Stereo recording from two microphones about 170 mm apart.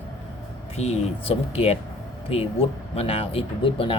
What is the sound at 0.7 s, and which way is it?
Speech, 40° left (ahead or behind).